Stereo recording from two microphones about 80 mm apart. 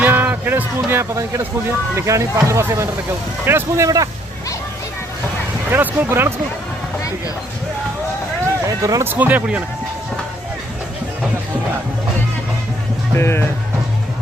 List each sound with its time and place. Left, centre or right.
0.0 s music: right
2.0 s speech: right
3.8 s speech: right
5.7 s speech: right
8.6 s speech: right
9.0 s speech: right
13.1 s speech: left